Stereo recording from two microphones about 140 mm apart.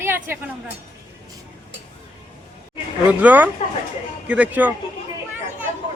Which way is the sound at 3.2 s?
10° right (ahead or behind).